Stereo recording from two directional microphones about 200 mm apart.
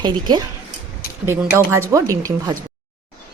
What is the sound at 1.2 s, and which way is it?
Speech, 10° right (ahead or behind).